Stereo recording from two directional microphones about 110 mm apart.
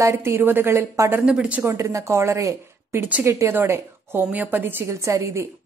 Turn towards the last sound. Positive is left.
turn(degrees=-25)  # may be behind; listen again after turning